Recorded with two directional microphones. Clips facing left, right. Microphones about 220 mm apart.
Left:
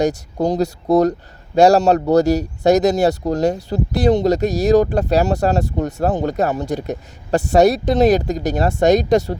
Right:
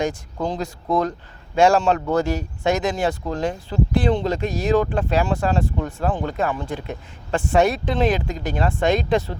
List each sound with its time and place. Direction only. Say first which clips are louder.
0.3 s speech: left 8 dB; 40° left (ahead or behind)